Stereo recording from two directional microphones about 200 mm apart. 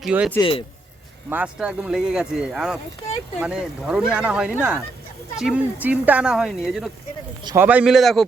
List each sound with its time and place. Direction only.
0.0 s speech: 5° right (ahead or behind)
0.3 s speech: 25° left (ahead or behind)
1.3 s speech: 5° right (ahead or behind)
7.4 s a man's voice: 10° right (ahead or behind)